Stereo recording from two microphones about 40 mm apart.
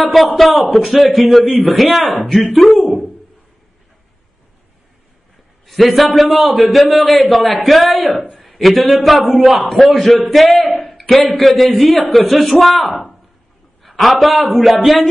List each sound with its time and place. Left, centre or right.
0.0 s a man's voice: centre
1.4 s a man's voice: centre
5.7 s a man's voice: centre
10.6 s a sound: left
10.9 s a man's voice: centre